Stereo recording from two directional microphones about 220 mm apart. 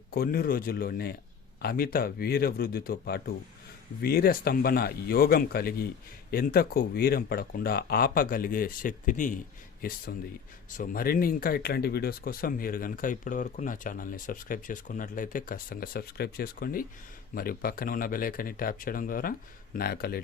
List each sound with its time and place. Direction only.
0.1 s speech: 40° left (ahead or behind)
10.8 s speech: 40° left (ahead or behind)